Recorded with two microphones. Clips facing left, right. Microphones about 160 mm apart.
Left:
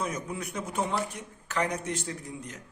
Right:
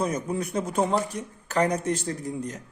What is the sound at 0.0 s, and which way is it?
Speech, 35° right (ahead or behind).